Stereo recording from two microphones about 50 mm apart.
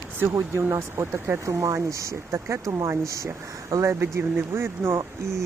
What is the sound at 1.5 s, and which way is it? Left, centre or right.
Speech, right.